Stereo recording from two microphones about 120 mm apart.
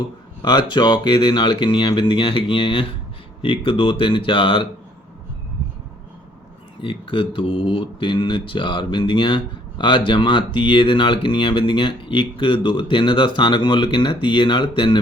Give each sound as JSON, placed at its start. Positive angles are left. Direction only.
{"t": 0.4, "sound": "speech", "side_deg": 40}
{"t": 6.8, "sound": "speech", "side_deg": 45}